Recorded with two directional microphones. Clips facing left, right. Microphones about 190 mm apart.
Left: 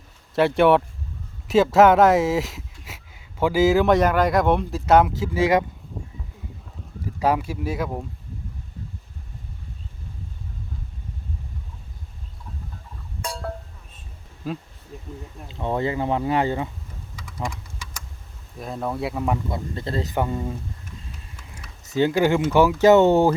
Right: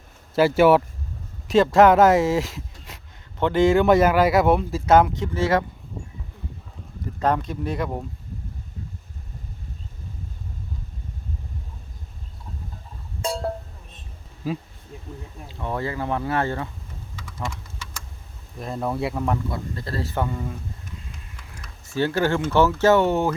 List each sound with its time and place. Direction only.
0.3 s speech: centre (ahead or behind); by 5.6 s 15° left (ahead or behind)
7.0 s speech: 10° left (ahead or behind)
13.2 s a sound: 25° right (ahead or behind)
14.4 s speech: 5° right (ahead or behind)
15.4 s speech: 20° left (ahead or behind)
17.2 s typing: 15° left (ahead or behind)
18.5 s speech: centre (ahead or behind)
19.5 s speech: 25° left (ahead or behind)
21.9 s speech: 15° left (ahead or behind)